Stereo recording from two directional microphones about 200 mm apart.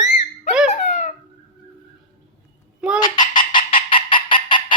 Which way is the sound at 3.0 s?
20° left (ahead or behind).